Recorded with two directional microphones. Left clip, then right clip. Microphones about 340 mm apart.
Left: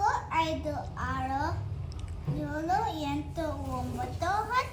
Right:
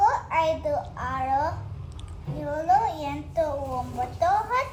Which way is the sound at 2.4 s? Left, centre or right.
Centre.